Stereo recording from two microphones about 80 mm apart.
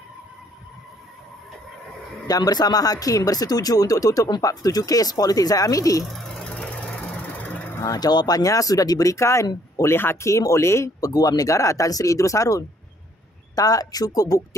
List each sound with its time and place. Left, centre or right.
2.2 s speech: left
6.1 s a sound: centre
6.5 s engine: centre
7.3 s vehicle: left
7.8 s speech: left
10.2 s speech: left